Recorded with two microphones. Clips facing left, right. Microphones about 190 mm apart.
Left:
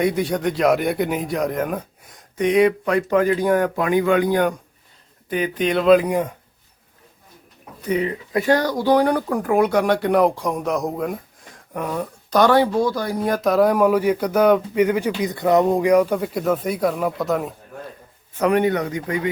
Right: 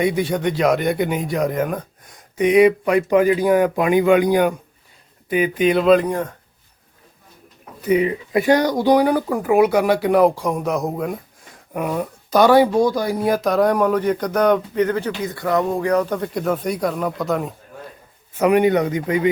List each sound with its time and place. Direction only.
0.0 s speech: centre (ahead or behind)
2.4 s speech: 10° right (ahead or behind)
6.1 s speech: 15° left (ahead or behind)
7.8 s speech: 10° right (ahead or behind)
13.4 s speech: centre (ahead or behind)
18.3 s a man's voice: 10° right (ahead or behind)